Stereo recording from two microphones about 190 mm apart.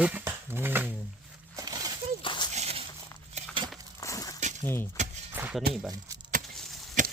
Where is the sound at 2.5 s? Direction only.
30° right (ahead or behind).